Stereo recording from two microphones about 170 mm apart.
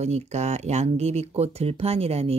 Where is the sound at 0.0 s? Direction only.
40° right (ahead or behind).